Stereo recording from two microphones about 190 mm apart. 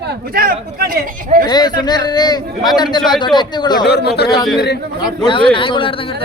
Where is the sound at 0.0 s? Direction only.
55° right (ahead or behind).